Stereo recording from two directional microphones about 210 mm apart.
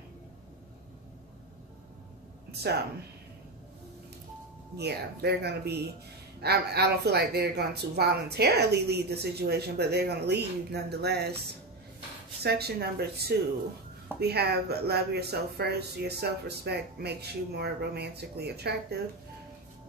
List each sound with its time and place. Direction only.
2.5 s a woman's voice: 50° right (ahead or behind)
4.7 s speech: 50° right (ahead or behind)
12.4 s speech: 50° right (ahead or behind)
14.2 s speech: 50° right (ahead or behind)